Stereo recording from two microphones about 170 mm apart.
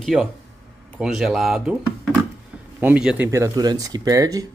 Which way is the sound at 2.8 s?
5° right (ahead or behind).